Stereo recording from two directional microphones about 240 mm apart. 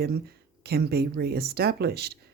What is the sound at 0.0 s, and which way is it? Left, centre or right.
Speech, right.